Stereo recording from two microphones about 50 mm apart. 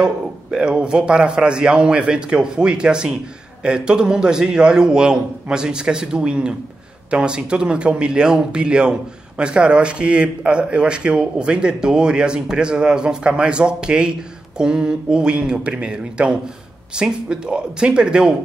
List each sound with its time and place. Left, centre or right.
0.0 s a man's voice: centre